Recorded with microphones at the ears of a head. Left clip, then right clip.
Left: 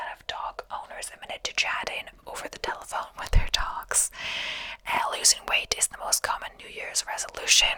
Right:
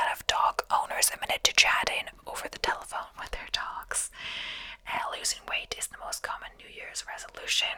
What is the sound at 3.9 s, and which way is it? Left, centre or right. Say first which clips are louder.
Whispering: left 6 dB; left.